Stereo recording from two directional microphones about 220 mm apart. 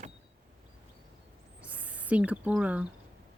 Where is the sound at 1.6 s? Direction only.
5° right (ahead or behind).